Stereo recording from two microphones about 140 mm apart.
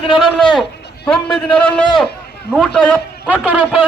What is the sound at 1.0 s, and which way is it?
A man's voice, 5° left (ahead or behind).